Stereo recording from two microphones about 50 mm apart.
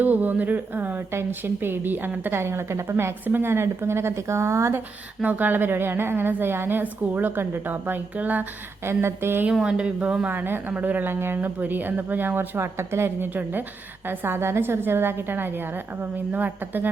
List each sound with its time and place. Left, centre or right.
0.0 s a woman's voice: right
5.2 s a woman's voice: right
8.8 s speech: right
9.6 s speech: centre
10.2 s speech: right
11.1 s a woman's voice: right
11.3 s speech: right
12.5 s speech: right
13.3 s a woman's voice: right